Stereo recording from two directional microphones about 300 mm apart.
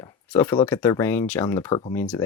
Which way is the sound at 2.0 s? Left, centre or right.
Centre.